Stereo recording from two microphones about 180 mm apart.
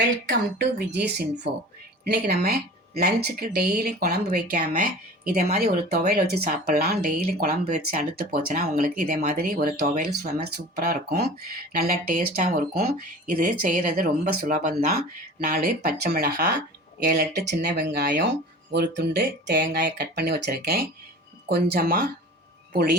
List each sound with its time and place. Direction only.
0.3 s speech: 70° right (ahead or behind)